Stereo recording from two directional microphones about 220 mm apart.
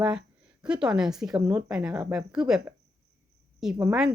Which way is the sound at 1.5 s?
15° right (ahead or behind).